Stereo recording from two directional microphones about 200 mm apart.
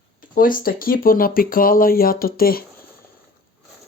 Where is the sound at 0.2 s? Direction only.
45° left (ahead or behind).